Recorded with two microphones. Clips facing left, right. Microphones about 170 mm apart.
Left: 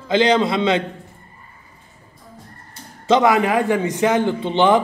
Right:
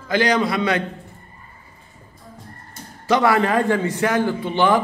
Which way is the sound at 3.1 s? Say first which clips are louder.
Left 2 dB; 15° left (ahead or behind).